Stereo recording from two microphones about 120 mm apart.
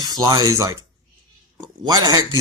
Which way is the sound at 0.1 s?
30° right (ahead or behind).